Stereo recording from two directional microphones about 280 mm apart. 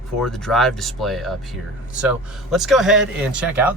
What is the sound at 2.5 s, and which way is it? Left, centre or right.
Speech, centre.